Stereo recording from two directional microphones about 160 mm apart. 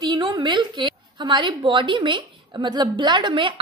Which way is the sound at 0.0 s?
30° right (ahead or behind).